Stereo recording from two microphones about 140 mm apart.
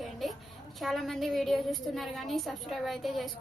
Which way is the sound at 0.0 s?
Centre (ahead or behind).